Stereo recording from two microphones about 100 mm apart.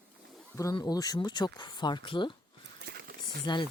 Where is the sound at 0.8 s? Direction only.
40° left (ahead or behind); by 2.3 s 55° left (ahead or behind).